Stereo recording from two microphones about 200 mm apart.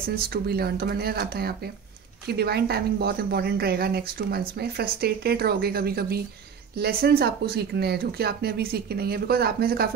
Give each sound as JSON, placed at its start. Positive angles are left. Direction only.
{"t": 0.1, "sound": "a woman's voice", "side_deg": -50}